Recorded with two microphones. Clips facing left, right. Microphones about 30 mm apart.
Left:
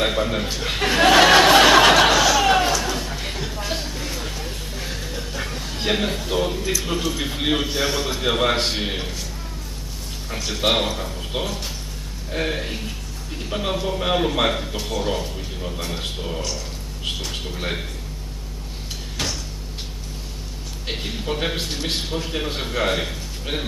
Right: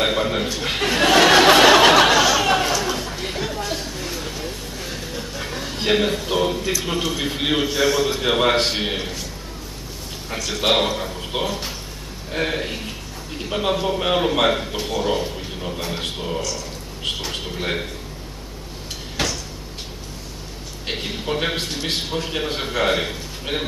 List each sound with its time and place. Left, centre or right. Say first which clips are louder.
0.0 s speech: right 1 dB; centre
0.8 s a sound: left 1 dB; centre
3.6 s a sound: right 1 dB; centre
5.5 s a man's voice: right 4 dB; centre
7.7 s a man's voice: right 4 dB; centre
8.0 s speech: right 2 dB; centre
10.5 s speech: right 2 dB; centre
19.2 s cupboard open or close: right 3 dB; centre
20.8 s a man's voice: right 2 dB; centre